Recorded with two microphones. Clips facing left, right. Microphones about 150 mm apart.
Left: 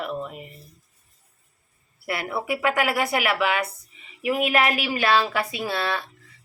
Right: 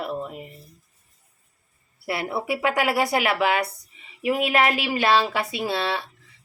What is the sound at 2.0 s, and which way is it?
Speech, 30° right (ahead or behind).